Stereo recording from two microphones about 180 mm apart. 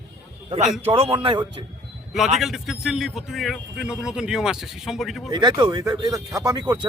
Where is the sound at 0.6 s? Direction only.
Centre (ahead or behind).